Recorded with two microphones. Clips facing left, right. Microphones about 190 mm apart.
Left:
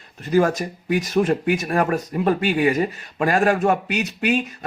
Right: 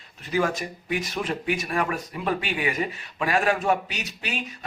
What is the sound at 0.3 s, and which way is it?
A man's voice, 45° left (ahead or behind).